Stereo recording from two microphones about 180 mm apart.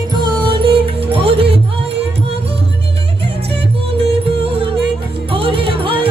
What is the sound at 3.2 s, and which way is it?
Music, 30° right (ahead or behind).